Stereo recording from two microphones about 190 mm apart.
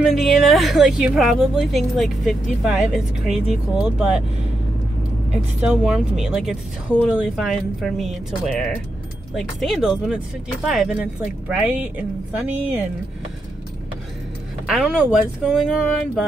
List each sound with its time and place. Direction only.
0.0 s a woman's voice: centre (ahead or behind)
5.9 s a woman's voice: 5° right (ahead or behind)
14.7 s a woman's voice: 5° right (ahead or behind)